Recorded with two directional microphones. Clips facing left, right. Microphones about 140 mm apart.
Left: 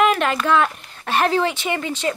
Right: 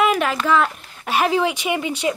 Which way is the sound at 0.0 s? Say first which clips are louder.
Left 1 dB; 5° right (ahead or behind).